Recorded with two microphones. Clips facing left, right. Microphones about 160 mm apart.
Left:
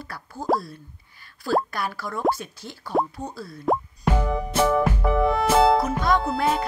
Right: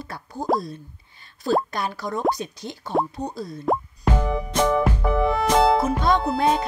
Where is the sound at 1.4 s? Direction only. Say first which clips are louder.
Right 1 dB; 20° right (ahead or behind).